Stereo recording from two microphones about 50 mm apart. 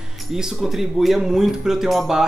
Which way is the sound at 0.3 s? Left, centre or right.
Centre.